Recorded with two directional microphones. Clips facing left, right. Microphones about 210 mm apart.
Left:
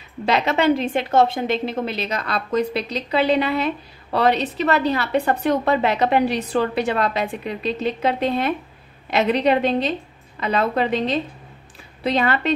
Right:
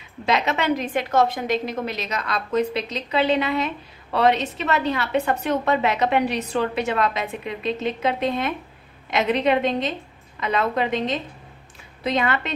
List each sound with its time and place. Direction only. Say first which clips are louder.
0.2 s a woman's voice: left 3 dB; 35° left (ahead or behind)